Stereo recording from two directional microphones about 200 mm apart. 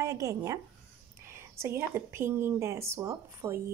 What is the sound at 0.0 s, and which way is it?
Speech, 15° right (ahead or behind).